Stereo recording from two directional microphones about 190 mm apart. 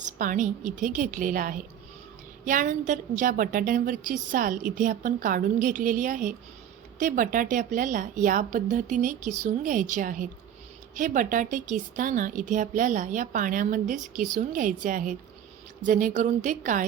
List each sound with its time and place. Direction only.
0.0 s a woman's voice: 45° right (ahead or behind)